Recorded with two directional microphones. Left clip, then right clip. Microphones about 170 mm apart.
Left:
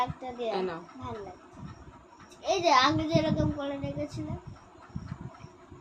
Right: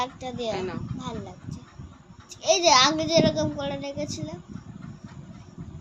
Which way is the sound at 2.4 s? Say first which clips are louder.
Right 5 dB; 65° right (ahead or behind).